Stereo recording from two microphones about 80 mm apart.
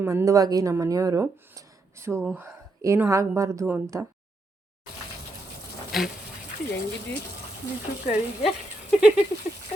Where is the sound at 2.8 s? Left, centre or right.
Right.